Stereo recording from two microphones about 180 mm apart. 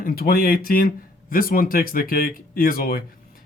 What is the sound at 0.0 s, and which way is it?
Speech, 55° left (ahead or behind).